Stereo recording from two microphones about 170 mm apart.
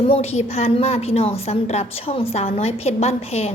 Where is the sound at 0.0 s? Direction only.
35° left (ahead or behind).